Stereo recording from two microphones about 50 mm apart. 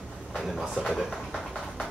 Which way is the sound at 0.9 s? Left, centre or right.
Centre.